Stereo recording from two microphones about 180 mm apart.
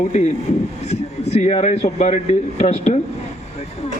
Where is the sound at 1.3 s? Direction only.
40° left (ahead or behind).